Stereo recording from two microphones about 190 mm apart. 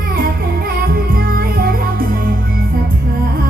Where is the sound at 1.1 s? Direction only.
50° right (ahead or behind).